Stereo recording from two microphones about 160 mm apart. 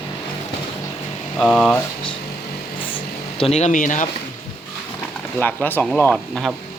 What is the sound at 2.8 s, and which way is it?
Vehicle, 35° left (ahead or behind).